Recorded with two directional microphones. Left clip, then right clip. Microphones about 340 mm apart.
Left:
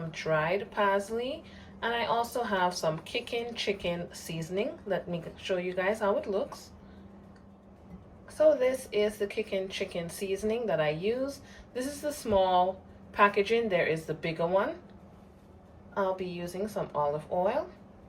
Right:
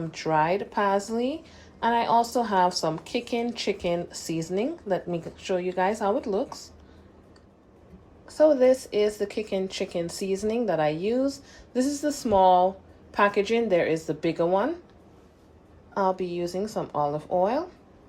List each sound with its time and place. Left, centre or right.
0.1 s speech: centre
8.4 s speech: centre
16.0 s speech: centre